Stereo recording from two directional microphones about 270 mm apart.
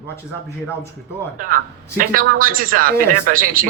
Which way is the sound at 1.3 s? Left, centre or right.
Right.